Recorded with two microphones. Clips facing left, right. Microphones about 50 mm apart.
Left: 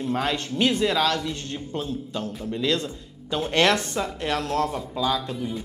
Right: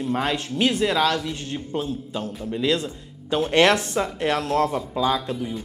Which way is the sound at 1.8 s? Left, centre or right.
Right.